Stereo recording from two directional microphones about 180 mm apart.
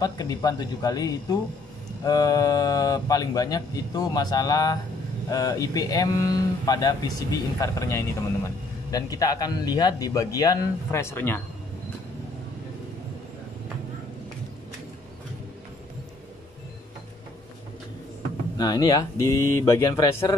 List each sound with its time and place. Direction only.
0.0 s speech: 20° left (ahead or behind)
18.6 s speech: 20° left (ahead or behind)